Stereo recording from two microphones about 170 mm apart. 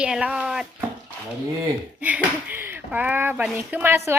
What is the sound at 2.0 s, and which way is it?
Speech, 10° right (ahead or behind).